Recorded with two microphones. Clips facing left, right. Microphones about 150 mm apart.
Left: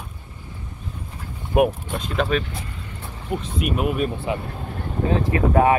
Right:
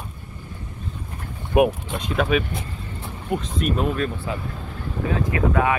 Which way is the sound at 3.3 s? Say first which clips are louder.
Right 1 dB; 5° left (ahead or behind).